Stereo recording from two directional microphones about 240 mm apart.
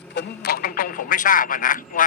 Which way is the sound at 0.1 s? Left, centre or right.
Left.